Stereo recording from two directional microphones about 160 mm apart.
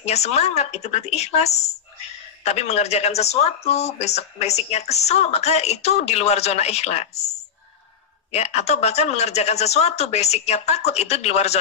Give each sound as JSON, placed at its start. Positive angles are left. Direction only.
{"t": 0.0, "sound": "speech", "side_deg": 45}